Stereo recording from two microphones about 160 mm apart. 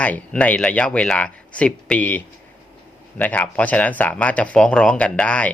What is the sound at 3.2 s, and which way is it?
Speech, 10° left (ahead or behind).